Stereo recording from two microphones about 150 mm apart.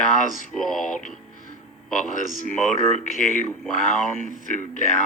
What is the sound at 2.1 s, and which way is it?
Speech, 60° left (ahead or behind).